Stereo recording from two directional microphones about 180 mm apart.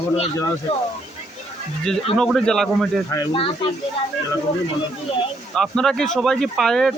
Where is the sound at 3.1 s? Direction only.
25° left (ahead or behind).